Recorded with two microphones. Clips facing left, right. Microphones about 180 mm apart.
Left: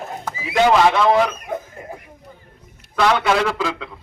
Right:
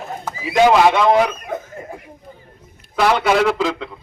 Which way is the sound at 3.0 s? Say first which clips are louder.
Right 2 dB; 5° right (ahead or behind).